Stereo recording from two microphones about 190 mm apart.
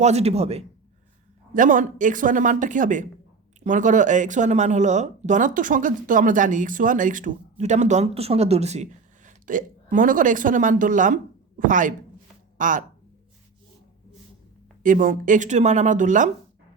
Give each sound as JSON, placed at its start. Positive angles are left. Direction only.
{"t": 0.0, "sound": "speech", "side_deg": -35}
{"t": 1.5, "sound": "speech", "side_deg": -45}
{"t": 14.8, "sound": "speech", "side_deg": -45}